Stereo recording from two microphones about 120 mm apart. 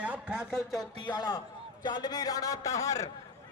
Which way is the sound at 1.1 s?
40° left (ahead or behind).